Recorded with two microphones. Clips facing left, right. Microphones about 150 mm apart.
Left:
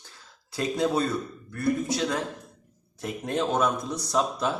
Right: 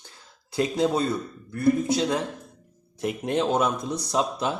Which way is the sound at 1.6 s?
20° right (ahead or behind).